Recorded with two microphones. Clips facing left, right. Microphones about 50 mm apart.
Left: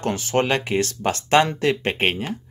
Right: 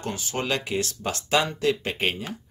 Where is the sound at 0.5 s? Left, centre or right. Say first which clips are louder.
Left 5 dB; left.